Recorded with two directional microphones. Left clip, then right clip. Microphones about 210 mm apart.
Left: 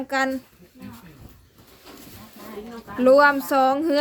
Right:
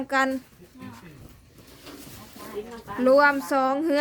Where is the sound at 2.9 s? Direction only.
10° left (ahead or behind).